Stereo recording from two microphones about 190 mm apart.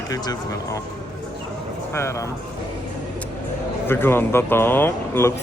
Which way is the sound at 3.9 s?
10° left (ahead or behind).